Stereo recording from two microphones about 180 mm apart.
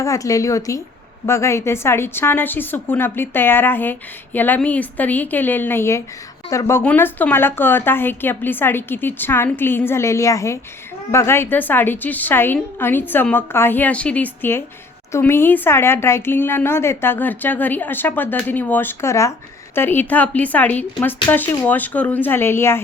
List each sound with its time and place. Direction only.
0.0 s speech: 20° left (ahead or behind)